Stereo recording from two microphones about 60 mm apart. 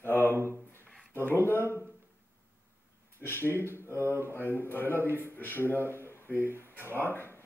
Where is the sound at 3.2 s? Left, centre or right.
Left.